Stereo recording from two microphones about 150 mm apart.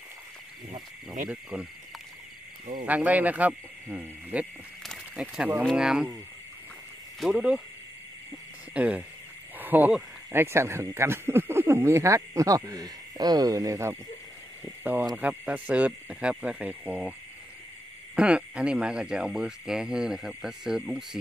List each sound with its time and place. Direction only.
1.3 s speech: 10° right (ahead or behind)
2.8 s speech: 10° right (ahead or behind)
4.8 s a sound: centre (ahead or behind)
5.2 s speech: 5° right (ahead or behind)
7.2 s speech: 5° right (ahead or behind)
8.7 s speech: 10° right (ahead or behind)
14.6 s speech: 10° right (ahead or behind)
18.1 s speech: 5° right (ahead or behind)